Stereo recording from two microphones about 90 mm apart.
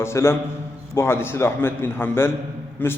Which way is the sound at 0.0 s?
30° left (ahead or behind).